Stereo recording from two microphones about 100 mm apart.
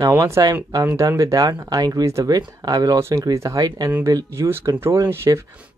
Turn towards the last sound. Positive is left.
turn(degrees=-25)  # may be behind; listen again after turning